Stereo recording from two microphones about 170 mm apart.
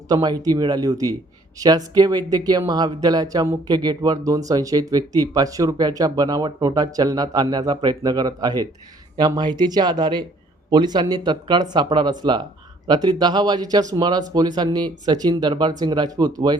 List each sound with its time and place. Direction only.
0.1 s speech: 25° right (ahead or behind)